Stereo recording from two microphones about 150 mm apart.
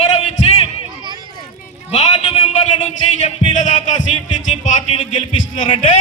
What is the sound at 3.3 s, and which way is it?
Music, 55° left (ahead or behind).